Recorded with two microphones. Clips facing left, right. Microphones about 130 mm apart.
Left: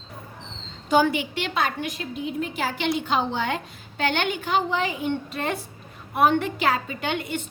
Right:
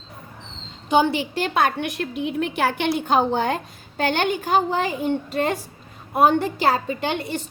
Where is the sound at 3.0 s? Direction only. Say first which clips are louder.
Right 5 dB; 45° right (ahead or behind).